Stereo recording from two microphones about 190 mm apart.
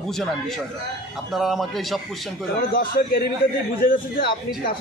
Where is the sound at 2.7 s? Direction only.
50° left (ahead or behind).